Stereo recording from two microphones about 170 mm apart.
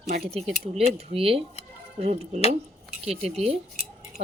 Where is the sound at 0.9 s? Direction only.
35° right (ahead or behind).